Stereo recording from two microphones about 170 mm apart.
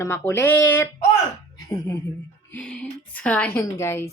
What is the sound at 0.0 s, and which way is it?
Speech, 15° left (ahead or behind).